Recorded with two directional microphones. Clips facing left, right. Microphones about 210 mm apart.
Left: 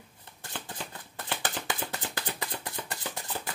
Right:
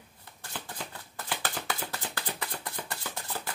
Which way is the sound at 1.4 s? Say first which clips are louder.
Left 2 dB; 15° left (ahead or behind).